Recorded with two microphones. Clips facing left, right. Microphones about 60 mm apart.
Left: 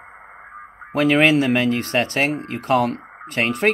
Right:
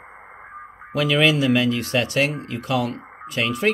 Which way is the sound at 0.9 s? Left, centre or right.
Left.